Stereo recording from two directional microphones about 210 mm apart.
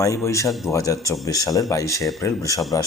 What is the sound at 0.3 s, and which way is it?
A man's voice, 15° left (ahead or behind).